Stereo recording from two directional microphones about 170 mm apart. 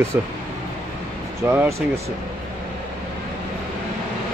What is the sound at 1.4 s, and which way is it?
Speech, 15° right (ahead or behind).